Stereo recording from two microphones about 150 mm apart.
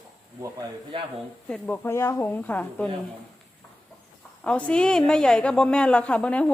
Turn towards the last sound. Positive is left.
turn(degrees=10)  # may be behind; listen again after turning